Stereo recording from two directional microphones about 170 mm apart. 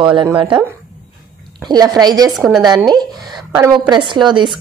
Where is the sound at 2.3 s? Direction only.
Centre (ahead or behind).